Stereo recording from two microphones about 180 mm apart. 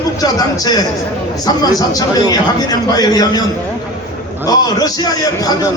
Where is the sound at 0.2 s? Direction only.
20° left (ahead or behind).